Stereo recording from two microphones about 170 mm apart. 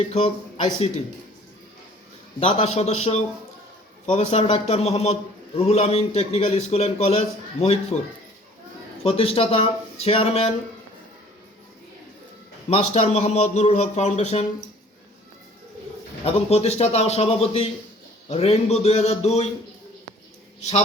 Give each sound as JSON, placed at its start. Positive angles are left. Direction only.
{"t": 0.1, "sound": "a man's voice", "side_deg": 35}
{"t": 2.4, "sound": "a man's voice", "side_deg": 35}
{"t": 9.0, "sound": "a man's voice", "side_deg": 35}
{"t": 12.7, "sound": "a man's voice", "side_deg": 40}
{"t": 16.2, "sound": "a man's voice", "side_deg": 40}
{"t": 20.6, "sound": "speech", "side_deg": 40}